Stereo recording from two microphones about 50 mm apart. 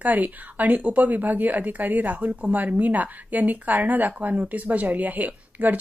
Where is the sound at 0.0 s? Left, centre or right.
Right.